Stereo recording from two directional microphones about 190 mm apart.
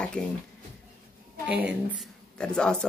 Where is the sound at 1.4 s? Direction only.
5° right (ahead or behind).